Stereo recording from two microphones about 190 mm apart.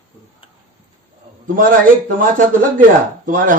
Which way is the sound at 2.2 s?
45° right (ahead or behind).